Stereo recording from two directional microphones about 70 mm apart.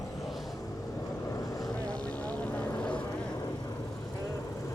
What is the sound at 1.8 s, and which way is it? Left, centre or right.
Vehicle, centre.